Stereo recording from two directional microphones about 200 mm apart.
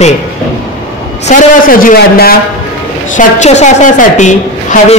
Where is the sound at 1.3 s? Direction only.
45° left (ahead or behind).